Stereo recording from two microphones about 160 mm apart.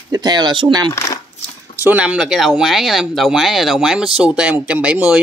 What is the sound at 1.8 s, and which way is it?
Speech, 10° right (ahead or behind).